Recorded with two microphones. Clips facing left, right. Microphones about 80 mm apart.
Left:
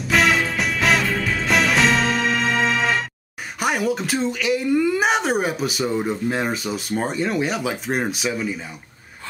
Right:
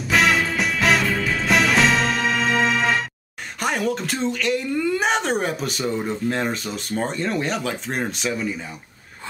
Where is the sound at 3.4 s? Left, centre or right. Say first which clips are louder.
Left 2 dB; centre.